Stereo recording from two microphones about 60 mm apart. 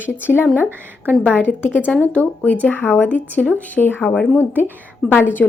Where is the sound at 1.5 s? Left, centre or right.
Left.